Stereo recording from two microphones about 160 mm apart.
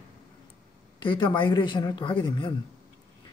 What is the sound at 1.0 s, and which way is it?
Speech, 30° left (ahead or behind).